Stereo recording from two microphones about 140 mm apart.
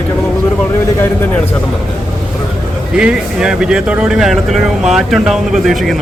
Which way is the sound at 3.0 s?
5° right (ahead or behind).